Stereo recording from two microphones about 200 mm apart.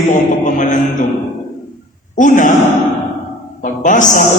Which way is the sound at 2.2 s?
40° left (ahead or behind).